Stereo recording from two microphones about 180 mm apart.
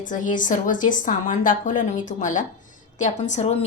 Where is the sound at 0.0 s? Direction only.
45° left (ahead or behind).